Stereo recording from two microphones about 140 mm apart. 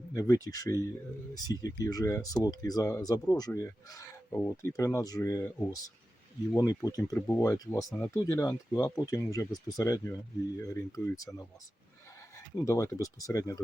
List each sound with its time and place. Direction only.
0.1 s speech: 25° left (ahead or behind)
12.5 s speech: 25° left (ahead or behind)